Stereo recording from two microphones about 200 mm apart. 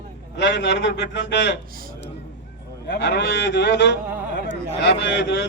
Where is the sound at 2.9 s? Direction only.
55° left (ahead or behind).